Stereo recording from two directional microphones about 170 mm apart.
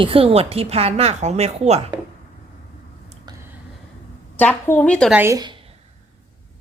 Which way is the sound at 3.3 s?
25° right (ahead or behind).